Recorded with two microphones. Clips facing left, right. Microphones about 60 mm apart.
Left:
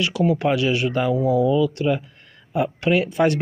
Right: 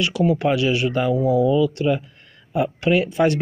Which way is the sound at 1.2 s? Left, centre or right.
Left.